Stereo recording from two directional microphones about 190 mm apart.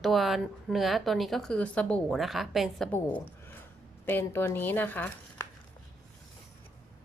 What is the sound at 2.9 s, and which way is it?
A woman's voice, 10° left (ahead or behind).